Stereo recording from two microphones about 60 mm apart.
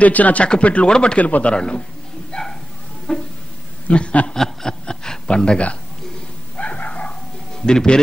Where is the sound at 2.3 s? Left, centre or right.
Centre.